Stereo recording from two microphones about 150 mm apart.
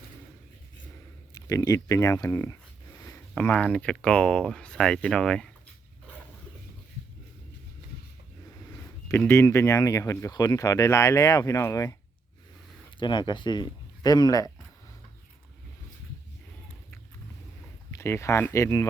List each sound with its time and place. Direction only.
1.3 s speech: 25° left (ahead or behind); by 5.5 s 5° left (ahead or behind)
9.0 s speech: 15° left (ahead or behind)
13.0 s speech: 30° left (ahead or behind)
17.9 s speech: 20° left (ahead or behind)